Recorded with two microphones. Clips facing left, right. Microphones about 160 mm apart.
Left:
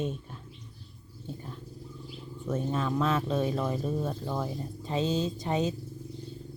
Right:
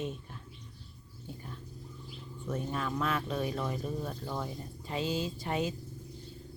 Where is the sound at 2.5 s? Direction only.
25° left (ahead or behind).